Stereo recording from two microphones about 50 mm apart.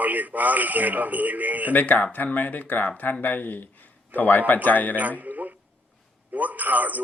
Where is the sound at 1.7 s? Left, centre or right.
Left.